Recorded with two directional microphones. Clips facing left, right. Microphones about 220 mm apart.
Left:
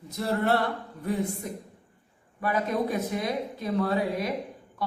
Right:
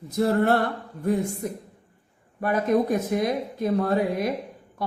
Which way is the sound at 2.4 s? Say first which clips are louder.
Right 5 dB; 50° right (ahead or behind).